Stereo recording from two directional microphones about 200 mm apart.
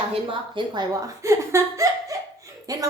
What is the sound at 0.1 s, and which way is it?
A woman's voice, 25° right (ahead or behind).